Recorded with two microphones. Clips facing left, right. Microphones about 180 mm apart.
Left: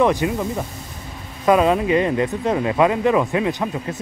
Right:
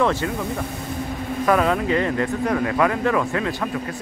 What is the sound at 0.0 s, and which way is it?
Speech, 15° left (ahead or behind).